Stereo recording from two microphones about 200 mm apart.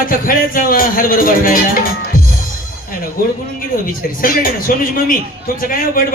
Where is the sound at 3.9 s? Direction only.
45° left (ahead or behind).